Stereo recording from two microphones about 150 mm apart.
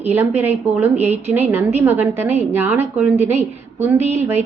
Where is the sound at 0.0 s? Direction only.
10° right (ahead or behind).